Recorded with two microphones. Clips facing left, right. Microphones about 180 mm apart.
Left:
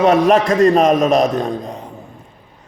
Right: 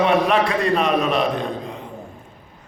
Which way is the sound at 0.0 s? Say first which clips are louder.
Left 5 dB; 45° left (ahead or behind).